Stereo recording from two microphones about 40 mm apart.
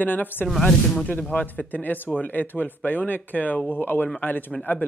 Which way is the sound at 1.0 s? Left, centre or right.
Left.